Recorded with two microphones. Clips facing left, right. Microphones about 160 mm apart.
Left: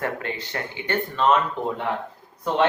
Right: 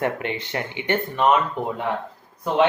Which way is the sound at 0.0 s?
20° right (ahead or behind).